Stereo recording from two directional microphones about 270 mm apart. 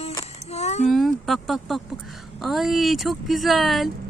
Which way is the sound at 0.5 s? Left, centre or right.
Left.